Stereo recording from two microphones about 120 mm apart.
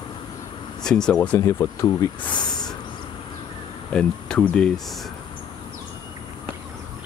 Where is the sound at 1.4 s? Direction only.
25° left (ahead or behind).